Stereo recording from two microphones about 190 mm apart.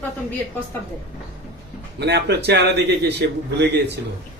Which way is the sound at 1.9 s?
60° right (ahead or behind).